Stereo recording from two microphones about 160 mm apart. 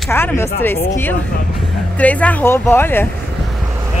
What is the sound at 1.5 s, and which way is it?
Speech, centre (ahead or behind).